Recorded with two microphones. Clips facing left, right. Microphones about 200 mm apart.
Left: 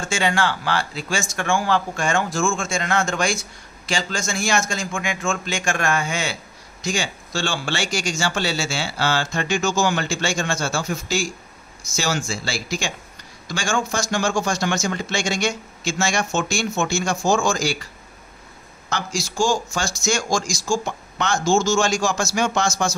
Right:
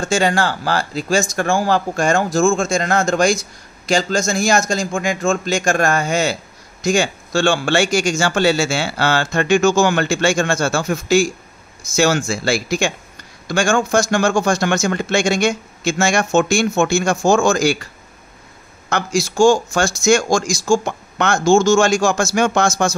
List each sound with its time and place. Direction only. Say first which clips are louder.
0.0 s speech: right 5 dB; 40° right (ahead or behind); by 17.7 s 55° right (ahead or behind)
18.9 s speech: right 7 dB; 55° right (ahead or behind)